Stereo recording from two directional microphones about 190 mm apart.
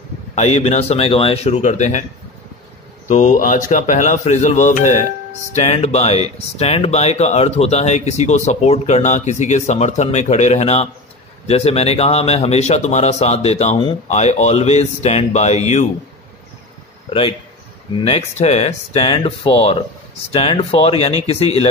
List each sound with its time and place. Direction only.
0.3 s speech: 35° left (ahead or behind)
3.1 s speech: 40° left (ahead or behind)
18.0 s speech: 35° left (ahead or behind)